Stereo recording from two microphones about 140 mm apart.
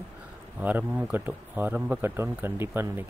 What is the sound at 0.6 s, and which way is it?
Speech, 10° right (ahead or behind).